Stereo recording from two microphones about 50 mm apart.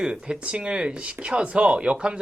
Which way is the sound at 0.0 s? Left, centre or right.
Centre.